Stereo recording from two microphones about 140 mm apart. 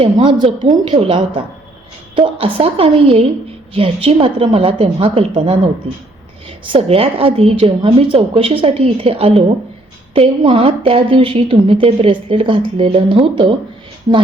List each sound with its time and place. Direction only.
0.0 s a woman's voice: 40° right (ahead or behind)